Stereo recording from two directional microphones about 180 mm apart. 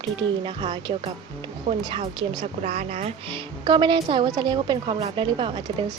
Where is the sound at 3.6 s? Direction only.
25° right (ahead or behind).